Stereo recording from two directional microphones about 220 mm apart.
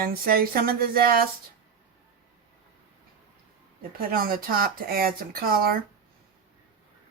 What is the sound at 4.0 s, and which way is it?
Speech, 40° right (ahead or behind).